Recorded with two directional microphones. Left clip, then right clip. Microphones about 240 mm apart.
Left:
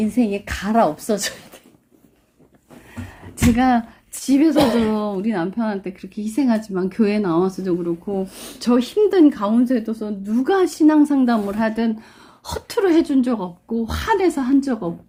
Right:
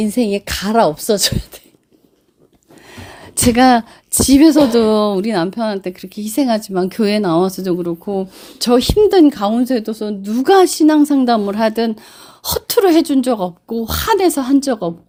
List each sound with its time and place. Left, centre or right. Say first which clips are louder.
0.0 s a woman's voice: right 4 dB; right
3.0 s a woman's voice: right 5 dB; right